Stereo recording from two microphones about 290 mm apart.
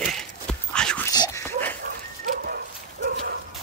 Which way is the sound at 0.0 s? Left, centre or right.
Centre.